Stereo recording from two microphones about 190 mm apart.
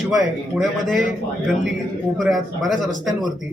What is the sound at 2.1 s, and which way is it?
Speech, centre (ahead or behind).